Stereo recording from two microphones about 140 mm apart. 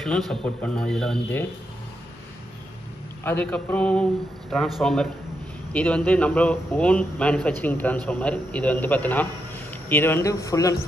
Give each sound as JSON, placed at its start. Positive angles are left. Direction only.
{"t": 0.3, "sound": "speech", "side_deg": 5}
{"t": 3.3, "sound": "speech", "side_deg": 10}